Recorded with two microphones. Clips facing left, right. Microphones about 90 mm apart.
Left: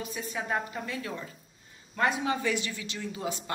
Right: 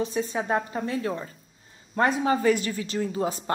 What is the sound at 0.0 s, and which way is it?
Speech, 30° right (ahead or behind).